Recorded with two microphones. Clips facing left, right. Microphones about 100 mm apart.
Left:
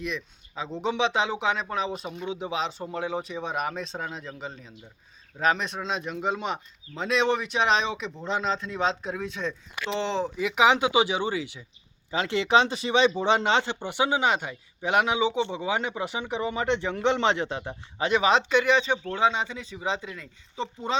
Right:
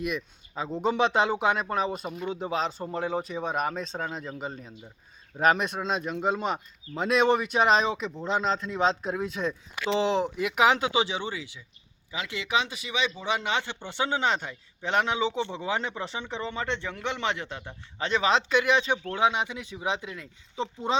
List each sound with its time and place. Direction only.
0.0 s speech: 5° right (ahead or behind)
12.1 s speech: 30° left (ahead or behind)
18.0 s speech: 5° left (ahead or behind)